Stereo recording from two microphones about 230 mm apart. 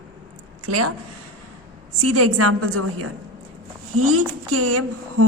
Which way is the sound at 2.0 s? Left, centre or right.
Right.